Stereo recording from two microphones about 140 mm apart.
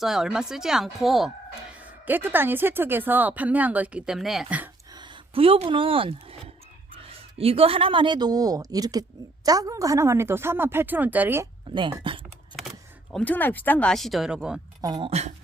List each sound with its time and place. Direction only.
0.0 s speech: centre (ahead or behind)
2.0 s speech: 15° right (ahead or behind)
4.9 s a woman's voice: 35° right (ahead or behind); by 11.4 s 15° right (ahead or behind)
11.7 s speech: 35° right (ahead or behind)
13.1 s speech: 10° left (ahead or behind)
14.8 s a woman's voice: 30° right (ahead or behind)